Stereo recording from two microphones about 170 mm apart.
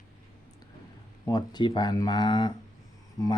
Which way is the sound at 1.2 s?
25° left (ahead or behind).